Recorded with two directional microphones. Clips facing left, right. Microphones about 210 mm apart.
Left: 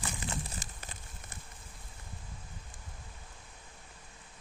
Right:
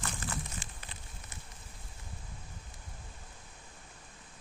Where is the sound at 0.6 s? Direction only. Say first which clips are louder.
Left 1 dB; 45° left (ahead or behind).